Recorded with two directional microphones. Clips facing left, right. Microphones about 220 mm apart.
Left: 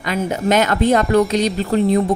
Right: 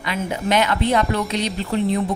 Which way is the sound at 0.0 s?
45° left (ahead or behind).